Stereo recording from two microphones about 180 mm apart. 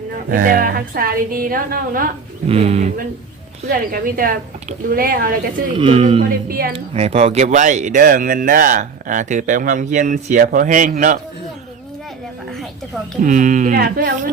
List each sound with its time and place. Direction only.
0.3 s speech: 50° right (ahead or behind)
2.5 s speech: 35° right (ahead or behind)
3.7 s speech: 55° right (ahead or behind)
5.7 s speech: 30° right (ahead or behind)
6.5 s speech: 55° right (ahead or behind)
6.7 s speech: 35° right (ahead or behind)
13.2 s speech: 45° right (ahead or behind); by 14.1 s 60° right (ahead or behind)